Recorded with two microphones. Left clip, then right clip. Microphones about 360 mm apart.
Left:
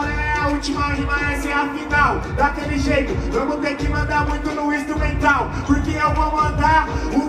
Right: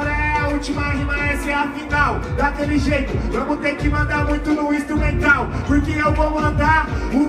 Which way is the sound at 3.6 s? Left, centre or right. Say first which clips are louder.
Right 2 dB; right.